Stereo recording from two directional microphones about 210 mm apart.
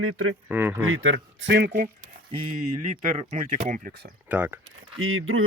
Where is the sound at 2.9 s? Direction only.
35° right (ahead or behind).